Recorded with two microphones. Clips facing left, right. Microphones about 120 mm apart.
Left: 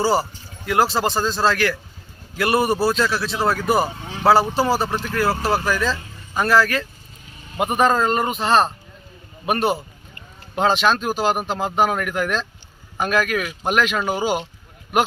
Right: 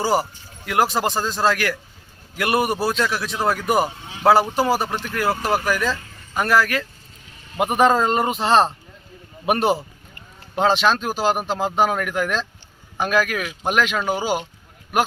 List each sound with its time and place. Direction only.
0.0 s a man's voice: 15° right (ahead or behind)
10.5 s speech: 5° left (ahead or behind)